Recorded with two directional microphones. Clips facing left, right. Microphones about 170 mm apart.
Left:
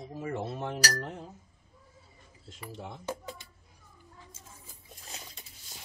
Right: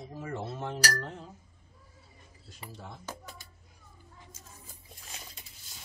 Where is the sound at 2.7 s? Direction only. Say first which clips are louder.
Left 5 dB; 20° left (ahead or behind).